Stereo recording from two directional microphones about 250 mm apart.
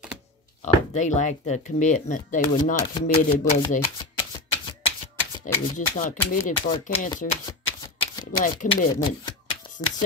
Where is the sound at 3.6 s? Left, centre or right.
Centre.